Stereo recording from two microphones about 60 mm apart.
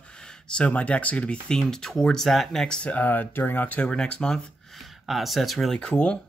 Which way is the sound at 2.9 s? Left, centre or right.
Left.